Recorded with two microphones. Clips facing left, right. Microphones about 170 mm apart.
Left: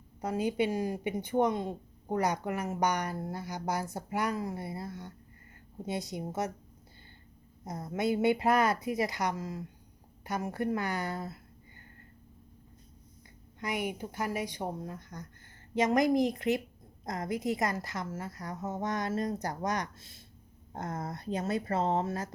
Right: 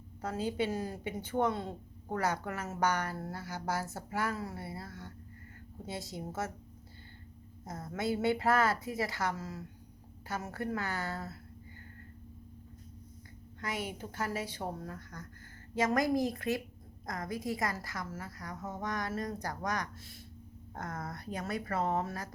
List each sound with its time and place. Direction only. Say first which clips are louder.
0.2 s a woman's voice: left 4 dB; 15° left (ahead or behind)
7.6 s a woman's voice: left 4 dB; 15° left (ahead or behind)
13.6 s a woman's voice: left 4 dB; 15° left (ahead or behind)